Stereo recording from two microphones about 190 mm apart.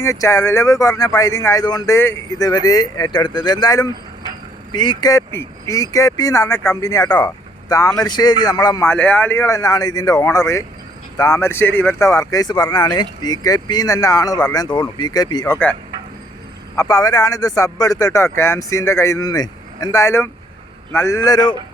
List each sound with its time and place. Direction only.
0.0 s speech: 15° left (ahead or behind)
16.7 s speech: 15° left (ahead or behind)